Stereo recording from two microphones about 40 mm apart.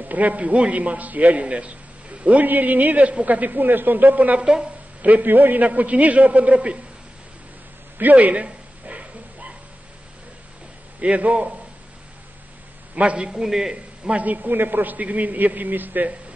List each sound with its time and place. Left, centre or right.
0.1 s a man's voice: right
2.4 s a man's voice: right
5.2 s a man's voice: right
5.7 s a man's voice: right
8.0 s bow-wow: right
11.0 s a man's voice: right
12.9 s a man's voice: right
13.3 s a man's voice: centre
14.0 s a man's voice: right